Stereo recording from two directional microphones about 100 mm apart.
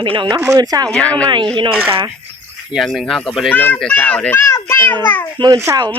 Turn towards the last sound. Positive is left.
turn(degrees=-35)  # may be behind; listen again after turning